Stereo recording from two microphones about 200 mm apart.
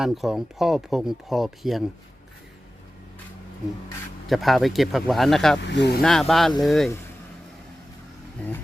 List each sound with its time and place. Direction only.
0.0 s speech: centre (ahead or behind)
4.3 s speech: centre (ahead or behind)
5.6 s speech: 60° left (ahead or behind)
6.0 s speech: centre (ahead or behind)
8.4 s speech: 10° left (ahead or behind)